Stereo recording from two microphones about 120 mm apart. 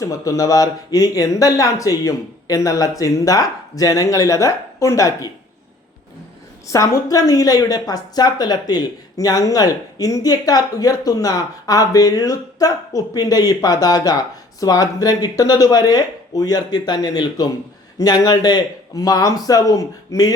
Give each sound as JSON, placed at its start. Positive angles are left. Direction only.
{"t": 0.0, "sound": "speech", "side_deg": 25}
{"t": 6.7, "sound": "a woman's voice", "side_deg": 25}